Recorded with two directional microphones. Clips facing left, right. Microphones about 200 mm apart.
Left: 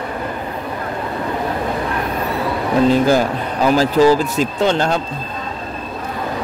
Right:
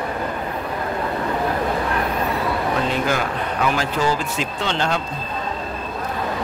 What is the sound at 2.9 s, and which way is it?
Speech, 35° left (ahead or behind).